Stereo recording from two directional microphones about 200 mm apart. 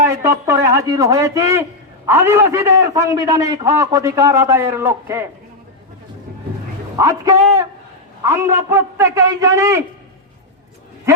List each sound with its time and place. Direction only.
0.0 s a man's voice: 15° right (ahead or behind)
6.9 s a man's voice: 15° right (ahead or behind)